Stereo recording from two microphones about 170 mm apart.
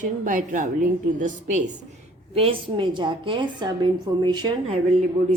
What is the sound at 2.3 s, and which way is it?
A woman's voice, 35° right (ahead or behind).